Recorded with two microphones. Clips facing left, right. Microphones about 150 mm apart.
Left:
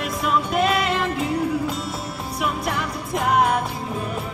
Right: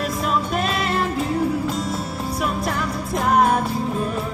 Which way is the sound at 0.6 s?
40° right (ahead or behind).